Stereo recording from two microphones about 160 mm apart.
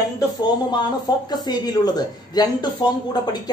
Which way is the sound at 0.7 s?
25° left (ahead or behind).